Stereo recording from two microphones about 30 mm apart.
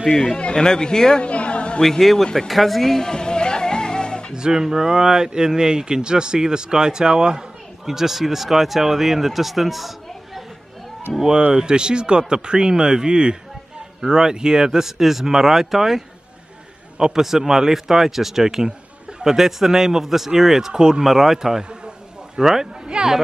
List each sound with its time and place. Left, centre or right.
0.1 s speech: centre
0.4 s a man's voice: left
0.7 s speech: left
1.2 s a sound: left
1.8 s speech: centre
3.1 s music: left
4.4 s speech: centre
7.8 s speech: centre
11.1 s speech: centre
11.5 s speech: right; by 16.0 s centre
17.0 s speech: centre
21.0 s speech: centre
22.9 s speech: right